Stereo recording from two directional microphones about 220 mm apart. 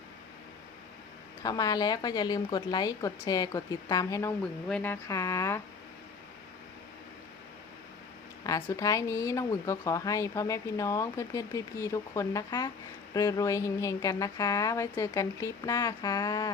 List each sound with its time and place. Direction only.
1.4 s speech: 15° left (ahead or behind)
8.4 s speech: 15° left (ahead or behind)